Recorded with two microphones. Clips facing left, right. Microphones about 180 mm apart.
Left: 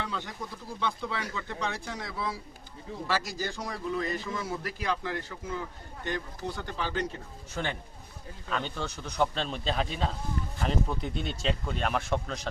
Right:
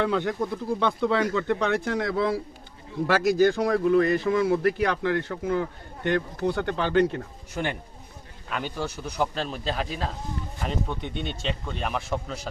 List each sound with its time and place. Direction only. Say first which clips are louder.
0.0 s speech: right 12 dB; 60° right (ahead or behind)
7.5 s speech: right 4 dB; 15° right (ahead or behind)